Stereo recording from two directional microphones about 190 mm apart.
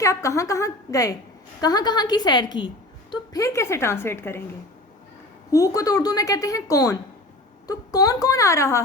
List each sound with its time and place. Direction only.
0.0 s a woman's voice: 15° left (ahead or behind)
5.5 s a woman's voice: 15° left (ahead or behind)